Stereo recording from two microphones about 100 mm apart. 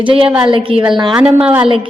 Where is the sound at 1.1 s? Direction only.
10° right (ahead or behind).